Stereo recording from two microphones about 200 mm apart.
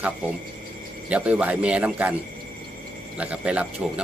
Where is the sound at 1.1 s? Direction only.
5° right (ahead or behind).